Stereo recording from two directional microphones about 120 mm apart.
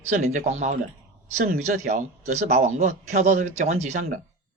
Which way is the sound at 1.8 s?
85° right.